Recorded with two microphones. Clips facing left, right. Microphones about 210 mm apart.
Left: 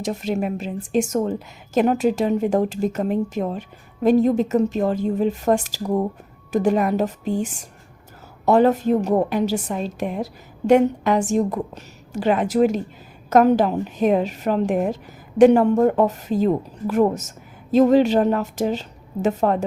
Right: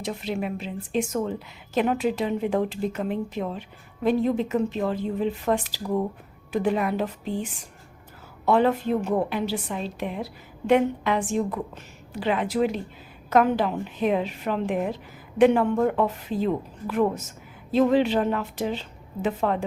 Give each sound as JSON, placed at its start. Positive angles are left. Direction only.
{"t": 0.0, "sound": "a woman's voice", "side_deg": 45}